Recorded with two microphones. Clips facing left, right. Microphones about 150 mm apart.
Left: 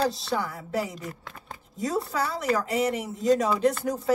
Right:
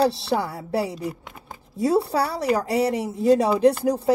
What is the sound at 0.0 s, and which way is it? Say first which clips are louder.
A woman's voice: right 5 dB; 30° right (ahead or behind).